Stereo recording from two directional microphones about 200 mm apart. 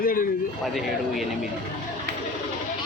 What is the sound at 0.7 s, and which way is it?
Speech, centre (ahead or behind).